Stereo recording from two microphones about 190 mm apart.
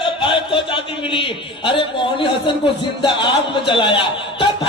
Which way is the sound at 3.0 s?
25° left (ahead or behind).